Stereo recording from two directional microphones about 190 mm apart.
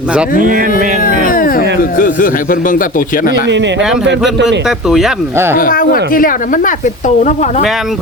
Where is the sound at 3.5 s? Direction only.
70° right (ahead or behind).